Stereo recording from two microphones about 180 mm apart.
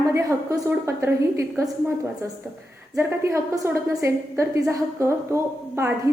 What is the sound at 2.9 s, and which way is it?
A woman's voice, 15° right (ahead or behind).